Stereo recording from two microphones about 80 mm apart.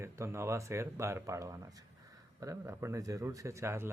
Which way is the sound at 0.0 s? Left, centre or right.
Right.